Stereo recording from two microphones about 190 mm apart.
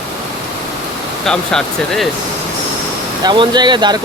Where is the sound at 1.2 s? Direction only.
5° left (ahead or behind).